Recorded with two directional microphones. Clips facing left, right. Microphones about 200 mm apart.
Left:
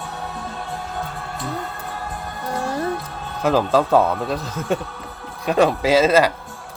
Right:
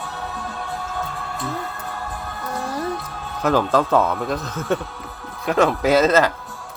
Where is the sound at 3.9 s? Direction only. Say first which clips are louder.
Left 2 dB; 30° left (ahead or behind).